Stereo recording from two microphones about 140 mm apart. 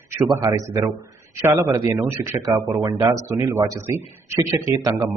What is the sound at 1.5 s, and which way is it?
Speech, 20° right (ahead or behind).